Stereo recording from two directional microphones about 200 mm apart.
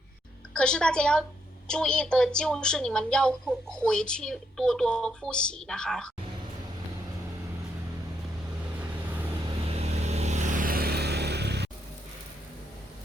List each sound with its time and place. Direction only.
0.5 s a woman's voice: 5° left (ahead or behind)
9.6 s vehicle: 30° right (ahead or behind); by 11.7 s 55° right (ahead or behind)